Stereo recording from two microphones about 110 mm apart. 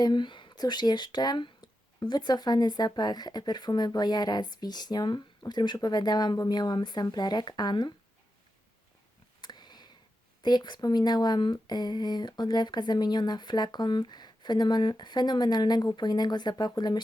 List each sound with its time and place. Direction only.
0.0 s speech: 45° left (ahead or behind)
9.4 s a sound: 40° left (ahead or behind)
10.4 s speech: 40° left (ahead or behind)